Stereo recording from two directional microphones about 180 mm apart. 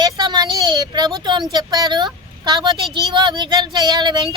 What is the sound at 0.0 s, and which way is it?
A woman's voice, 25° right (ahead or behind).